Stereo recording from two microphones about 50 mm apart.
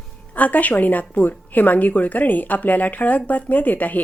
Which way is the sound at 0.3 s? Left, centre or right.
Left.